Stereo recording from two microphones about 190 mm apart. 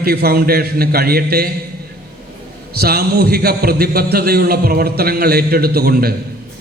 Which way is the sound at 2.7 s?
55° right (ahead or behind).